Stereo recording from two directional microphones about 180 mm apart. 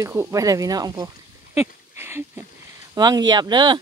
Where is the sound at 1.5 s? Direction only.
15° right (ahead or behind).